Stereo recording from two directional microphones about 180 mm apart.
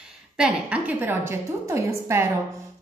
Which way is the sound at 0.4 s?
5° right (ahead or behind).